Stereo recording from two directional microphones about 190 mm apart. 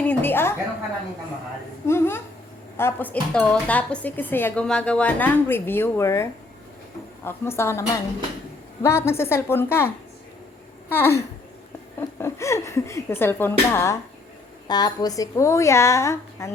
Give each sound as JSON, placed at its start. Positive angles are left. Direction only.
{"t": 0.0, "sound": "a sound", "side_deg": 10}
{"t": 1.9, "sound": "speech", "side_deg": 15}
{"t": 7.3, "sound": "a child's voice", "side_deg": 15}